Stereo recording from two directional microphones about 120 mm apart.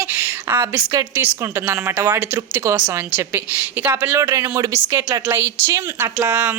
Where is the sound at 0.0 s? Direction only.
15° right (ahead or behind).